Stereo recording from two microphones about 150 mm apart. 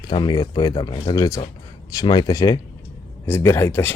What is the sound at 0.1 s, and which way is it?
Speech, 30° left (ahead or behind).